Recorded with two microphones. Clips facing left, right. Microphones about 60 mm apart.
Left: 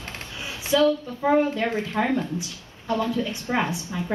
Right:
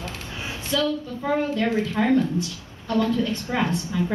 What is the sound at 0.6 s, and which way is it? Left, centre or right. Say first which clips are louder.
A woman's voice: left 5 dB; centre.